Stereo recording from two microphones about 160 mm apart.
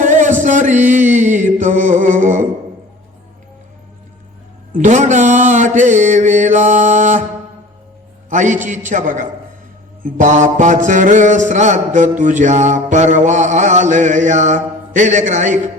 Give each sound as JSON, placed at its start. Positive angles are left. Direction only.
{"t": 0.0, "sound": "music", "side_deg": -50}
{"t": 4.7, "sound": "music", "side_deg": -50}
{"t": 8.3, "sound": "a man's voice", "side_deg": -50}
{"t": 8.6, "sound": "music", "side_deg": -50}